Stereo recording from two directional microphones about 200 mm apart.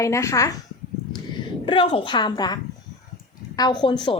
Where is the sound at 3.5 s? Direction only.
20° left (ahead or behind).